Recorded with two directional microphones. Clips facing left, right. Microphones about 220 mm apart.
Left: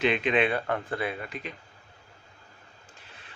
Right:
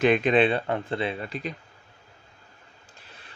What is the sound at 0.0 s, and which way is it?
Speech, 45° right (ahead or behind).